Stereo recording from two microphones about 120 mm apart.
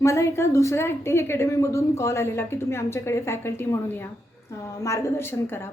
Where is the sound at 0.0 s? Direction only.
25° left (ahead or behind).